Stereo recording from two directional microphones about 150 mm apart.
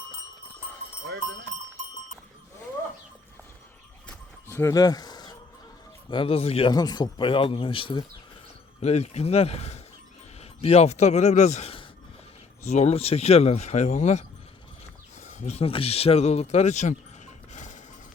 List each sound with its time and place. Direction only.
4.4 s a sound: 15° left (ahead or behind)
6.1 s speech: 35° left (ahead or behind)
6.7 s speech: 25° left (ahead or behind)
8.8 s speech: 45° left (ahead or behind)